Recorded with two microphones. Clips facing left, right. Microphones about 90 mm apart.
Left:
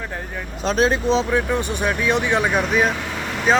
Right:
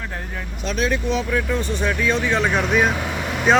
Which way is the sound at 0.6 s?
35° left (ahead or behind).